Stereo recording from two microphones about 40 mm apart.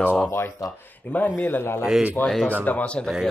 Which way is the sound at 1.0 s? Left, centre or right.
Left.